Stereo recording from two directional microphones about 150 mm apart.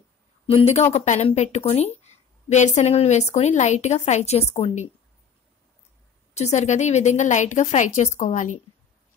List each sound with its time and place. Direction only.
0.5 s a woman's voice: 45° left (ahead or behind)
6.3 s a woman's voice: 50° left (ahead or behind)